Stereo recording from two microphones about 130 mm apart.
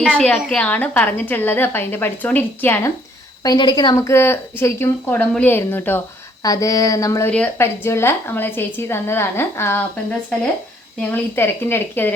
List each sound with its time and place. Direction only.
0.0 s a woman's voice: 5° left (ahead or behind)
3.4 s a woman's voice: 30° left (ahead or behind); by 6.0 s 15° left (ahead or behind)
6.4 s a woman's voice: 25° left (ahead or behind)
7.3 s a woman's voice: 10° left (ahead or behind)